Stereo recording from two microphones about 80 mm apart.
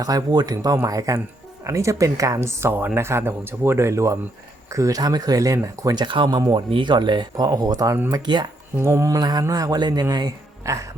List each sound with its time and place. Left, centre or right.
0.0 s speech: right
8.1 s speech: right
8.8 s speech: right
9.1 s speech: right